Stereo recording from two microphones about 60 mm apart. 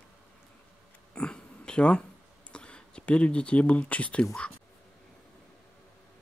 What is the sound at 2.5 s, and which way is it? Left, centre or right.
Speech, centre.